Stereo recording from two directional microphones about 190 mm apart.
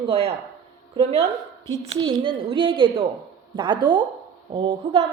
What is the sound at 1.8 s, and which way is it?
A woman's voice, 25° right (ahead or behind).